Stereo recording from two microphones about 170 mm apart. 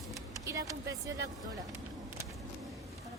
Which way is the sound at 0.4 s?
20° right (ahead or behind).